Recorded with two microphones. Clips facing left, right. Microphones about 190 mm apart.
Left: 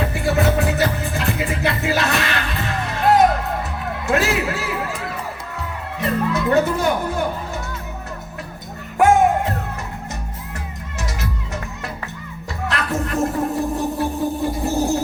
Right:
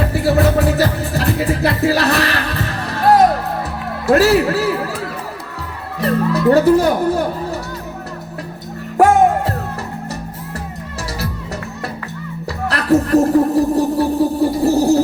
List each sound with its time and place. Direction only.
0.1 s music: 35° right (ahead or behind)
4.0 s a man's voice: 35° right (ahead or behind)
6.0 s speech: 35° right (ahead or behind)
12.6 s a sound: 35° right (ahead or behind)